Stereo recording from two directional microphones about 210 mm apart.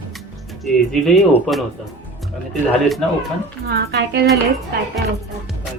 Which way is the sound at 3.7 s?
50° right (ahead or behind).